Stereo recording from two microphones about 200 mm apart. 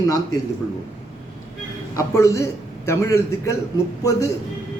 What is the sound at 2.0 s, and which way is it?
Speech, 15° left (ahead or behind).